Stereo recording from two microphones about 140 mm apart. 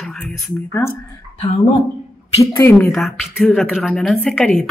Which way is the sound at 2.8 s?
Centre (ahead or behind).